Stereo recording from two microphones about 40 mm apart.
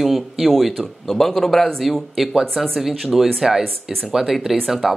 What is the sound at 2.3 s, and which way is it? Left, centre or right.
Speech, centre.